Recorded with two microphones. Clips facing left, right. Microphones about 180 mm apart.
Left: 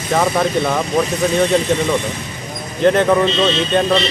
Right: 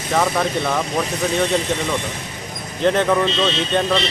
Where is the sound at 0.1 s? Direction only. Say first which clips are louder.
Left 3 dB; 5° left (ahead or behind).